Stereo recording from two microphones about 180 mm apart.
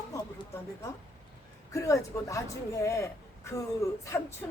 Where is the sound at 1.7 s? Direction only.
15° left (ahead or behind).